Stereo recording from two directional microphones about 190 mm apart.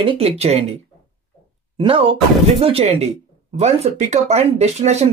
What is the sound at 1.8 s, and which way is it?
Speech, 30° right (ahead or behind).